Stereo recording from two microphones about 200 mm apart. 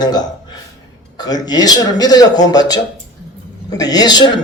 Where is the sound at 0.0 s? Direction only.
20° left (ahead or behind).